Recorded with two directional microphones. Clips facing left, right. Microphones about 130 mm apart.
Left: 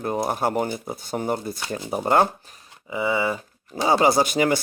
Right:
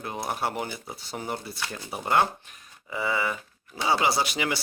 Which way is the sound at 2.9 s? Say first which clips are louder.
Left 5 dB; 20° left (ahead or behind).